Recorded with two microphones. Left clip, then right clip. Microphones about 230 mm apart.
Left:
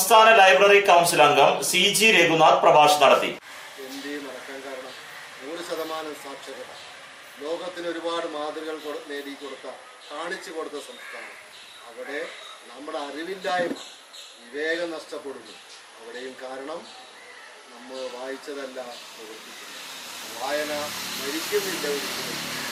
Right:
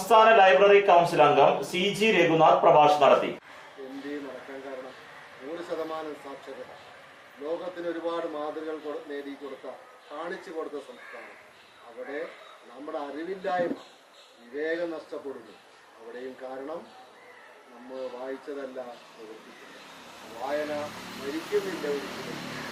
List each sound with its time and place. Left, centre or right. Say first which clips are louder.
0.1 s a man's voice: left 3 dB; centre
3.9 s a sound: left 3 dB; centre
7.6 s a man's voice: left 2 dB; centre
10.5 s speech: left 2 dB; right
12.0 s a man's voice: left 4 dB; centre
14.9 s speech: left 2 dB; right
16.1 s a man's voice: left 3 dB; centre
16.5 s speech: left 2 dB; right
17.9 s a man's voice: left 2 dB; centre
18.2 s speech: left 2 dB; right
18.5 s a man's voice: left 3 dB; centre